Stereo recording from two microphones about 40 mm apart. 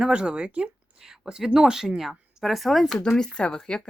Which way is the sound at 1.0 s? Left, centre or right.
Centre.